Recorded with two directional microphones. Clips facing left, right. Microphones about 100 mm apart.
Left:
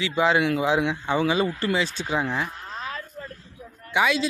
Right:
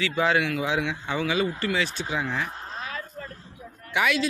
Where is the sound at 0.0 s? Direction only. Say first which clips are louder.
Left 2 dB; 25° left (ahead or behind).